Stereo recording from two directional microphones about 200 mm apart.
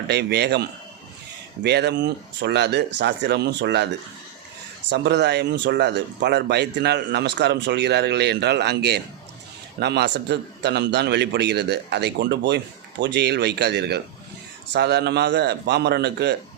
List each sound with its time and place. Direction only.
0.1 s a man's voice: 55° right (ahead or behind)
1.6 s a man's voice: 55° right (ahead or behind)
4.9 s a man's voice: 60° right (ahead or behind)